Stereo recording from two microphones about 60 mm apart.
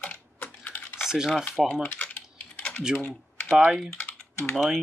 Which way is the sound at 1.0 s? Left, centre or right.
Centre.